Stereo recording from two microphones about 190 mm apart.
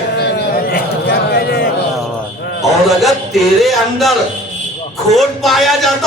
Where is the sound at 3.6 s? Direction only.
Centre (ahead or behind).